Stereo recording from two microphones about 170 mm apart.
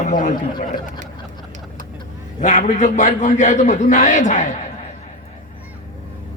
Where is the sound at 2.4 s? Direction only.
45° left (ahead or behind).